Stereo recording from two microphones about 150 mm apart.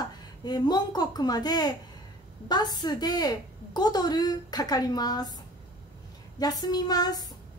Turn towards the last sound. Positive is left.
turn(degrees=25)  # may be behind; listen again after turning